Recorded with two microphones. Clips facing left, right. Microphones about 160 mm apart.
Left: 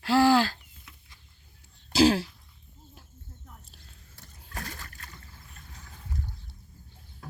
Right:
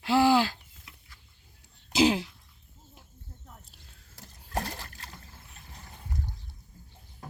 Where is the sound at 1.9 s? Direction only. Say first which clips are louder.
Left 2 dB; 20° right (ahead or behind).